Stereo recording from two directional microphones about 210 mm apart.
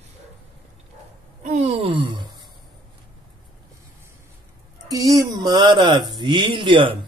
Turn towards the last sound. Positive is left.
turn(degrees=-25)  # may be behind; listen again after turning